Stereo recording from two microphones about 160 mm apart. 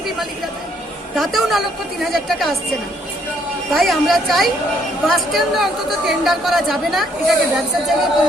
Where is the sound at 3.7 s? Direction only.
Centre (ahead or behind).